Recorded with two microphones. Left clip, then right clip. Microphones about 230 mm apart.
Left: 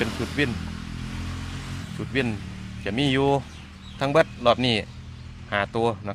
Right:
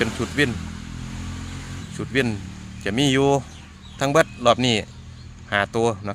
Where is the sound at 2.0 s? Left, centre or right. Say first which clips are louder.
Right 4 dB; right.